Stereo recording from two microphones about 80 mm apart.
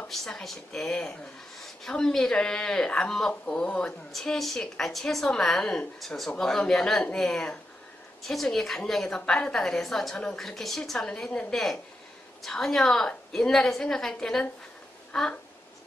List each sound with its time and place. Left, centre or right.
0.1 s a woman's voice: centre
3.6 s a woman's voice: centre
4.1 s a woman's voice: centre